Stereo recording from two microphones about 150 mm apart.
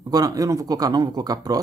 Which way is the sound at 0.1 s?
25° right (ahead or behind).